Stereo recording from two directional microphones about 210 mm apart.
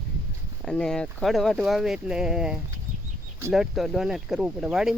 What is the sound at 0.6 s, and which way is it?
Speech, 5° left (ahead or behind).